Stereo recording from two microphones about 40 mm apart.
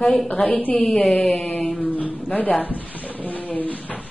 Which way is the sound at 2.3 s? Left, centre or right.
Left.